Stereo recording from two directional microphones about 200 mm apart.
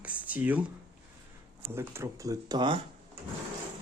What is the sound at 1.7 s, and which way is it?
Speech, 10° right (ahead or behind).